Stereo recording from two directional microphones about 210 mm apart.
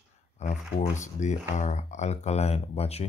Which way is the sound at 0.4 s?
35° left (ahead or behind).